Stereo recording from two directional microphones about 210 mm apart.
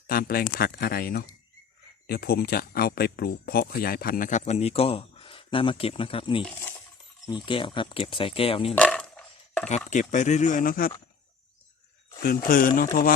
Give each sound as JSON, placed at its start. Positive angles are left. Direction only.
{"t": 0.1, "sound": "speech", "side_deg": 45}
{"t": 8.7, "sound": "a sound", "side_deg": 5}
{"t": 9.9, "sound": "speech", "side_deg": 35}
{"t": 12.2, "sound": "speech", "side_deg": 45}